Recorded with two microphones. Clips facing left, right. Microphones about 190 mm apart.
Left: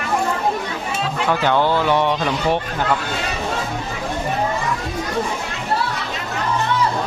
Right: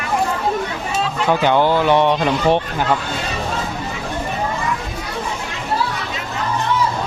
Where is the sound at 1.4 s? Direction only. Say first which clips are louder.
Right 2 dB; 15° right (ahead or behind).